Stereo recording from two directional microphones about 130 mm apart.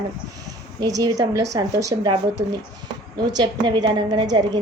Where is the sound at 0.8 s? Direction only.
30° right (ahead or behind).